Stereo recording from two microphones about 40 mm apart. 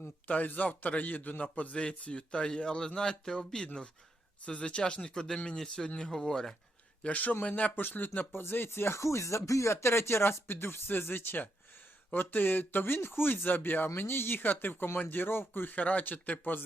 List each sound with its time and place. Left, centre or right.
0.3 s a man's voice: left; by 6.5 s centre
7.0 s speech: left
7.8 s speech: left
8.4 s speech: left
15.7 s speech: left
16.4 s speech: left